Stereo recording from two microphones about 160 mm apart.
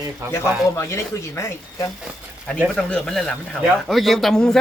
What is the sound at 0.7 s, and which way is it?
Speech, 20° left (ahead or behind).